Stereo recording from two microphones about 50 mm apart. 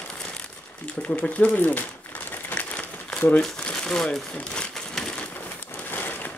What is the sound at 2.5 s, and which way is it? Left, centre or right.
Crumpling, left.